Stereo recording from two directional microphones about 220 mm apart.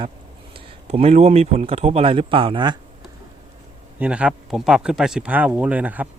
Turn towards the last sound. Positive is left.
turn(degrees=-5)  # may be behind; listen again after turning